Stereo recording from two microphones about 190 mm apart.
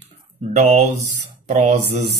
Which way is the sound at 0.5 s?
35° right (ahead or behind).